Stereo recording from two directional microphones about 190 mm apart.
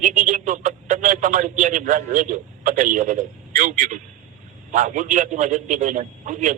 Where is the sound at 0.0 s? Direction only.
40° right (ahead or behind).